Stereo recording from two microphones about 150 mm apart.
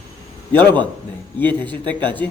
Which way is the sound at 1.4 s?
10° left (ahead or behind).